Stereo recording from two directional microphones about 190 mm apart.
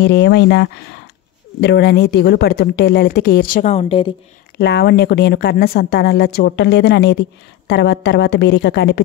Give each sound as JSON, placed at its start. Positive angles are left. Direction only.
{"t": 0.0, "sound": "speech", "side_deg": 65}
{"t": 4.6, "sound": "speech", "side_deg": 60}